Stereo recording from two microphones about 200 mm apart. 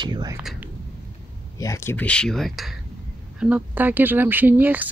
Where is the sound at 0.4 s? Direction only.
5° right (ahead or behind).